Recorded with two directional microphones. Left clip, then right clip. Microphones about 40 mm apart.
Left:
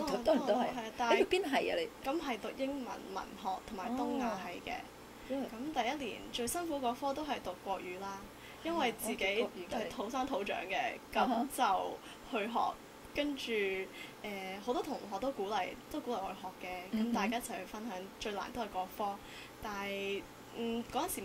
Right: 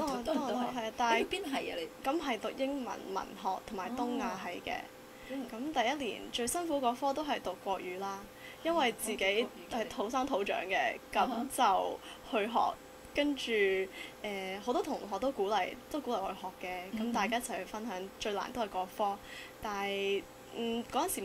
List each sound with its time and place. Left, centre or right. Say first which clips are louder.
0.0 s a sound: left 2 dB; left
0.7 s a woman's voice: right 1 dB; right
1.3 s a woman's voice: left 4 dB; left
2.0 s a woman's voice: right 3 dB; right